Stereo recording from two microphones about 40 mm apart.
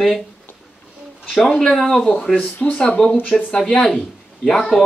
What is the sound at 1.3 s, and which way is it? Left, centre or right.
Speech, centre.